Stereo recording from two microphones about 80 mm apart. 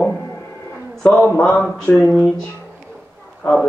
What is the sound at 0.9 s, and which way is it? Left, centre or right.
Speech, centre.